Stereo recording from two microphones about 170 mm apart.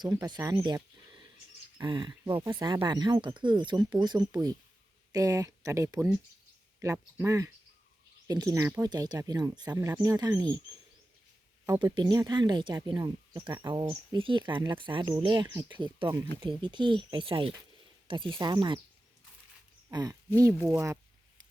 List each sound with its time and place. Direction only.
0.0 s speech: 20° right (ahead or behind)
11.6 s speech: 20° right (ahead or behind)
19.9 s speech: 20° right (ahead or behind)